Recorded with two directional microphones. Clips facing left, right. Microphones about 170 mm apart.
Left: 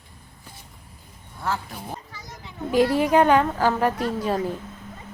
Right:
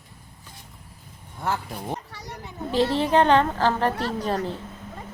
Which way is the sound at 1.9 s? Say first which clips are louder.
Right 4 dB; 70° right (ahead or behind).